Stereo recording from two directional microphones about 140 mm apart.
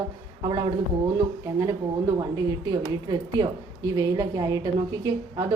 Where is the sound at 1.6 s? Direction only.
20° right (ahead or behind).